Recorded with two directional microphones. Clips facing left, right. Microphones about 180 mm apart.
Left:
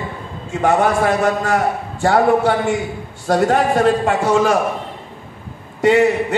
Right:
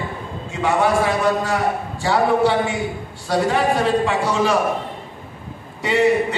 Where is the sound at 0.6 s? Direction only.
50° left (ahead or behind).